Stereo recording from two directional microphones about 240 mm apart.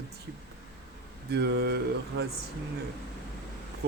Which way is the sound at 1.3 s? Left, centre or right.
Right.